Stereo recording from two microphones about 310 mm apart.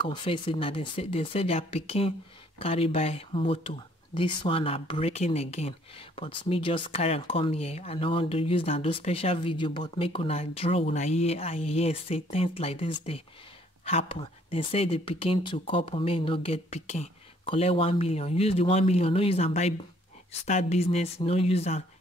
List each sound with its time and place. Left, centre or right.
0.0 s speech: centre